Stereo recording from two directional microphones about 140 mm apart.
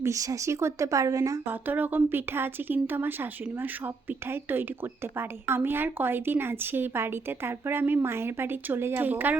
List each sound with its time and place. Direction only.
0.0 s speech: 25° right (ahead or behind)